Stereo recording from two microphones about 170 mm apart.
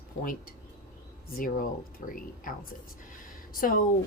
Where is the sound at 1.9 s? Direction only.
55° left (ahead or behind).